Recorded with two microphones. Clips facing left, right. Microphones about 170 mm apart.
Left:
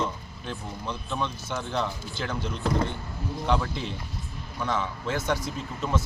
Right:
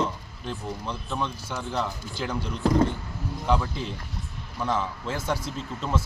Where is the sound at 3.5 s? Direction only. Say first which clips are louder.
Right 1 dB; centre (ahead or behind).